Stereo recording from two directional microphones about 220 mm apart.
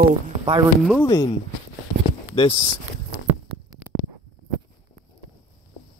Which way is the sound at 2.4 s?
25° left (ahead or behind).